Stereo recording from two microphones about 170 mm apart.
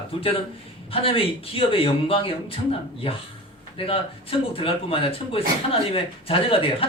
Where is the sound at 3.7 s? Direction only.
35° left (ahead or behind).